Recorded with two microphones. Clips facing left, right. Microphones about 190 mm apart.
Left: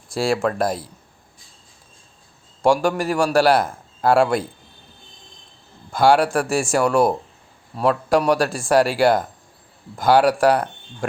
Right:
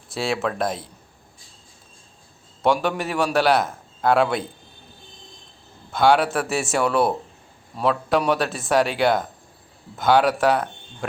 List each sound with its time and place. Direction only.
0.1 s speech: centre (ahead or behind)
2.6 s speech: centre (ahead or behind)
5.9 s speech: centre (ahead or behind)